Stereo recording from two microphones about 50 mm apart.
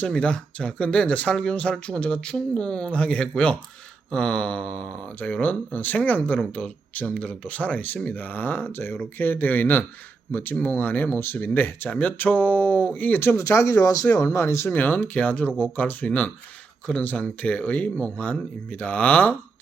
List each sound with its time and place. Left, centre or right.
0.1 s speech: left
1.3 s speech: centre; by 11.2 s left
11.2 s speech: left
13.3 s speech: left
14.7 s speech: left